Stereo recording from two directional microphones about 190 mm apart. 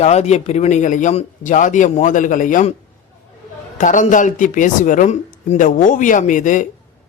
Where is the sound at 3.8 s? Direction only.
40° left (ahead or behind).